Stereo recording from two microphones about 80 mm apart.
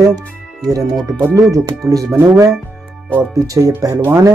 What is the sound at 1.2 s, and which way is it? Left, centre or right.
Speech, right.